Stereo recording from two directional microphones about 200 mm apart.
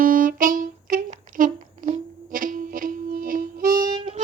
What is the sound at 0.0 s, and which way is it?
Music, 45° right (ahead or behind).